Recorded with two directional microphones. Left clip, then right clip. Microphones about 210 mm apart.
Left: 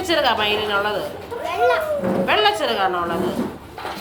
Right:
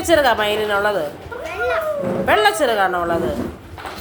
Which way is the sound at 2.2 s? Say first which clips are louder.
Right 4 dB; 30° right (ahead or behind).